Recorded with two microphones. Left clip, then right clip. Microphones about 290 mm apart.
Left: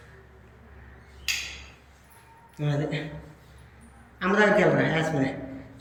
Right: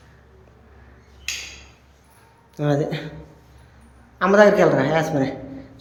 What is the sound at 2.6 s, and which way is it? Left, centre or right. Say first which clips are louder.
Speech: right 8 dB; centre.